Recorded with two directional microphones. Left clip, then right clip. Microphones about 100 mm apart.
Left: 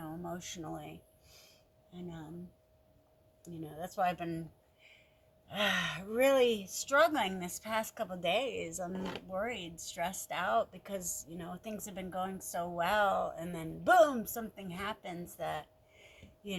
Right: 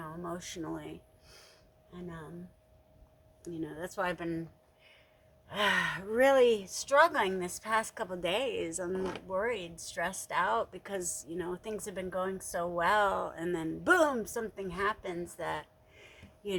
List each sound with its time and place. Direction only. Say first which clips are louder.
0.3 s speech: right 3 dB; 15° right (ahead or behind)
3.4 s a woman's voice: right 4 dB; 20° right (ahead or behind)
5.5 s a woman's voice: right 3 dB; 20° right (ahead or behind)
8.9 s speech: right 6 dB; 30° left (ahead or behind)
9.3 s speech: right 4 dB; 15° right (ahead or behind)
10.8 s a woman's voice: right 3 dB; 25° right (ahead or behind)
16.0 s a sound: right 4 dB; 30° right (ahead or behind)